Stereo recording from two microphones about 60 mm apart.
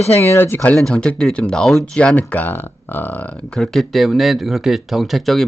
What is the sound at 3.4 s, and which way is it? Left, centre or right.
Speech, centre.